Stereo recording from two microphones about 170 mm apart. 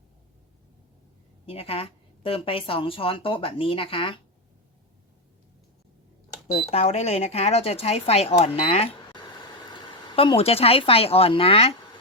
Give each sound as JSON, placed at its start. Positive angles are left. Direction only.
{"t": 1.5, "sound": "speech", "side_deg": 35}
{"t": 6.6, "sound": "speech", "side_deg": 40}